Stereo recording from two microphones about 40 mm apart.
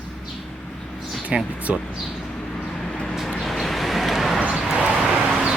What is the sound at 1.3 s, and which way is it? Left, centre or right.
Speech, right.